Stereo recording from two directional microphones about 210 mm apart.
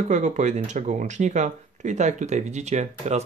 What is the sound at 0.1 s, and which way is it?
Speech, 35° right (ahead or behind).